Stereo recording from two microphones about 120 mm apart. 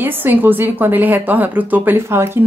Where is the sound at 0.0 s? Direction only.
15° right (ahead or behind).